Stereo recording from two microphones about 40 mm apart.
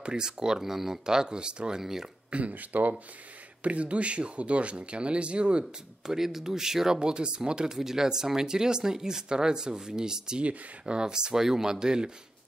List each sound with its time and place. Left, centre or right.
0.0 s speech: centre
1.8 s speech: centre
2.3 s speech: right
6.0 s speech: centre
7.0 s speech: right